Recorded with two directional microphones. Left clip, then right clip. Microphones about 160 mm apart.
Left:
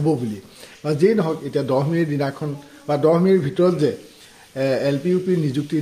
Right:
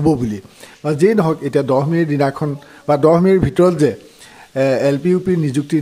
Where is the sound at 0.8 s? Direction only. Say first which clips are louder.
Right 4 dB; 30° right (ahead or behind).